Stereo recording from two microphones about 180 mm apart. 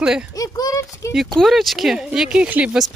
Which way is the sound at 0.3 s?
20° left (ahead or behind).